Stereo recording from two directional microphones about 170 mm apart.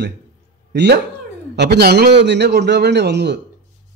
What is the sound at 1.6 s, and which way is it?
A man's voice, 70° right (ahead or behind).